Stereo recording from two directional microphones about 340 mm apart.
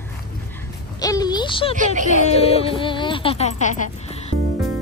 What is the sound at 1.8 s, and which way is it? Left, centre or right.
Speech, right.